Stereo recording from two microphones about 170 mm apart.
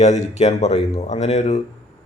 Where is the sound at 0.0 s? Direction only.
40° left (ahead or behind).